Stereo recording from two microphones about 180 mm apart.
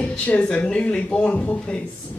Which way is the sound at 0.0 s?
5° left (ahead or behind).